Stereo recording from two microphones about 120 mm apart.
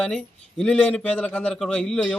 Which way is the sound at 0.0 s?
5° left (ahead or behind).